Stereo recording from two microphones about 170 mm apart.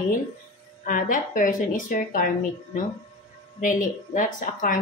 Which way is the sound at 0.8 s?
50° left (ahead or behind).